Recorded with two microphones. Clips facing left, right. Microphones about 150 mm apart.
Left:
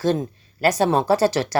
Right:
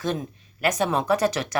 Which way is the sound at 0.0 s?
35° left (ahead or behind).